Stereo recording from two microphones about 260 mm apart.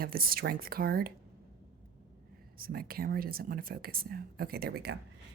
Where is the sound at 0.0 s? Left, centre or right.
Right.